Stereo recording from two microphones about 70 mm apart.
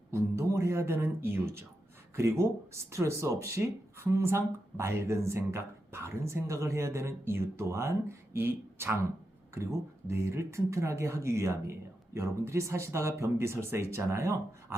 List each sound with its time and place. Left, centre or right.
0.1 s speech: right
10.1 s speech: right